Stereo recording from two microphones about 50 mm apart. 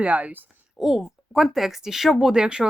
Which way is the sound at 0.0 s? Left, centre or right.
Right.